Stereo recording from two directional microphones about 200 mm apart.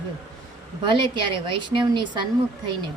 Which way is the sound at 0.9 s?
25° right (ahead or behind).